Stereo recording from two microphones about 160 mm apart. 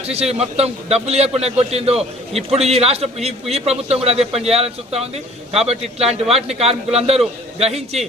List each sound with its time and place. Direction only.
0.0 s a man's voice: 40° right (ahead or behind)